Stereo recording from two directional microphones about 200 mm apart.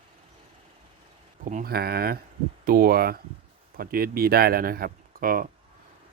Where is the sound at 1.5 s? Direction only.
45° right (ahead or behind).